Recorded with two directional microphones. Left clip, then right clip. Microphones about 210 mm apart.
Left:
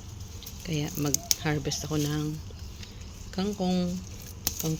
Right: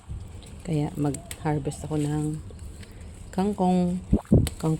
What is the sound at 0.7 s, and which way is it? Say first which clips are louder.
Speech: right 2 dB; 20° right (ahead or behind).